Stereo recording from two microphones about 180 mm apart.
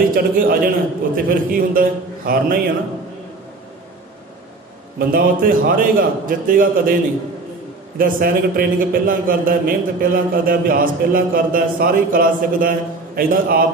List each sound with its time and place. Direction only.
0.1 s a man's voice: 55° right (ahead or behind)
4.9 s a man's voice: 50° right (ahead or behind)
8.0 s a man's voice: 55° right (ahead or behind)